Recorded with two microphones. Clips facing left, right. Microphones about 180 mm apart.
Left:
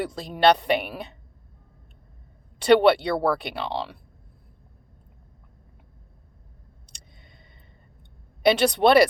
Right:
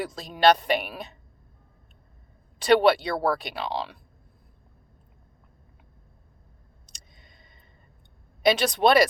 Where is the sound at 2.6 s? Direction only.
60° left (ahead or behind).